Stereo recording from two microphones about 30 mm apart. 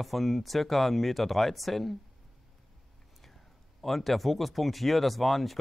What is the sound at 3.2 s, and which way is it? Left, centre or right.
Speech, centre.